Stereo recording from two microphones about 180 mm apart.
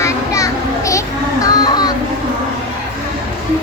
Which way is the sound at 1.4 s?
20° left (ahead or behind).